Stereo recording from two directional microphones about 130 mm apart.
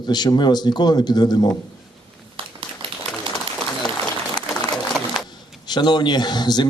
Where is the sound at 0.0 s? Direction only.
35° left (ahead or behind).